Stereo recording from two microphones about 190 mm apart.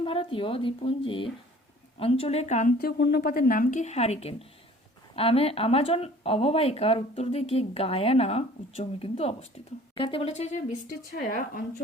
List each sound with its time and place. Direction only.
0.0 s speech: 30° left (ahead or behind); by 11.6 s 45° left (ahead or behind)